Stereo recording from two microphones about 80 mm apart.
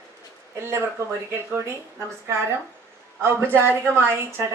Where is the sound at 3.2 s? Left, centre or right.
Right.